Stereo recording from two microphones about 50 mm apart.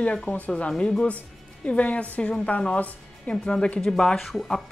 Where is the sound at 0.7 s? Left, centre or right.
Centre.